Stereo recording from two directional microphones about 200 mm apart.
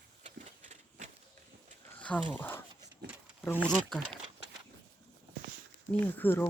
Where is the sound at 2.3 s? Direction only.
10° left (ahead or behind).